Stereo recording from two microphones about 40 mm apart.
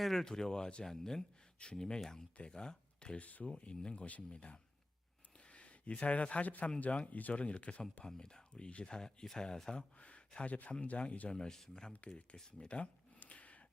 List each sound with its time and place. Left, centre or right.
0.0 s speech: centre; by 3.2 s left
3.2 s speech: left
7.2 s speech: left
8.0 s speech: centre
11.3 s speech: centre
11.9 s speech: left
13.1 s a sound: left